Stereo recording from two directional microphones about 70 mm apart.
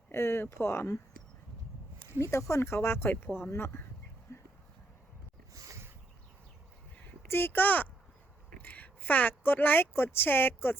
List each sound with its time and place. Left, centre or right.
0.1 s speech: left
2.0 s speech: left
4.3 s a sound: left
7.3 s speech: left